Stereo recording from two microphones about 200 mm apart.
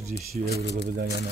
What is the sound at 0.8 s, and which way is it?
Speech, 55° right (ahead or behind).